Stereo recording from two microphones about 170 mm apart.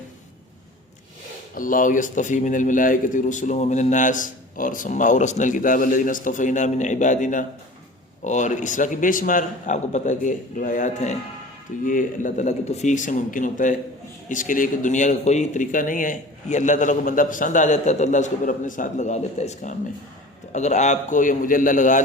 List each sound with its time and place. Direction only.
1.5 s a man's voice: 50° left (ahead or behind)